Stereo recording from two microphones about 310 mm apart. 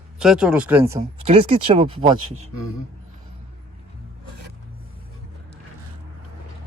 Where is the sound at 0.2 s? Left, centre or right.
Centre.